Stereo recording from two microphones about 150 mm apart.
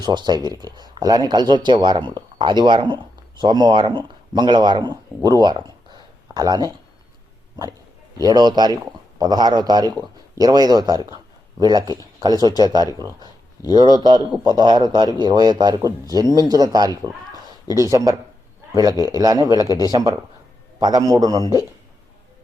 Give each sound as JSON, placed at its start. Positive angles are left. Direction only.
{"t": 0.0, "sound": "speech", "side_deg": -30}
{"t": 5.9, "sound": "a sound", "side_deg": -25}
{"t": 8.2, "sound": "speech", "side_deg": -25}
{"t": 19.6, "sound": "speech", "side_deg": 25}
{"t": 19.9, "sound": "speech", "side_deg": -25}